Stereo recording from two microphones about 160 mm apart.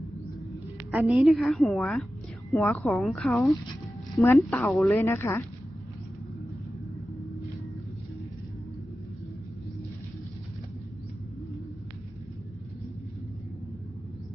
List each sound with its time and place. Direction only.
0.9 s a woman's voice: centre (ahead or behind)
4.2 s speech: 15° left (ahead or behind)